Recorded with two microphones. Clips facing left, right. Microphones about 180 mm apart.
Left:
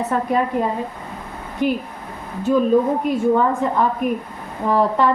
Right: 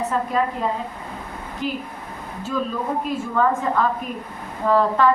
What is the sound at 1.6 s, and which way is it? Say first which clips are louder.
Speech: left 7 dB; 60° left (ahead or behind).